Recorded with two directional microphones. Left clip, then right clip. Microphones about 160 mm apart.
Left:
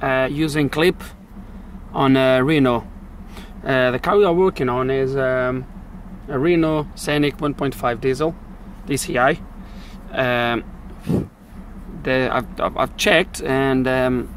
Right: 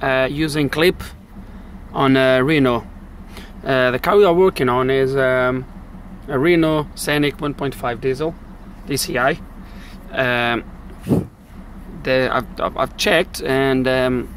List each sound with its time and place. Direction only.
0.0 s speech: centre (ahead or behind)
7.4 s speech: 15° left (ahead or behind)
8.8 s speech: centre (ahead or behind)